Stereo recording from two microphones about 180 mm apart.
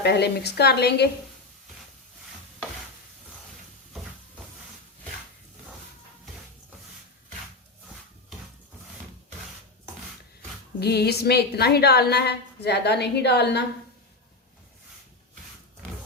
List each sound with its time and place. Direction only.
0.0 s a woman's voice: 65° left (ahead or behind)
10.8 s a woman's voice: 65° left (ahead or behind)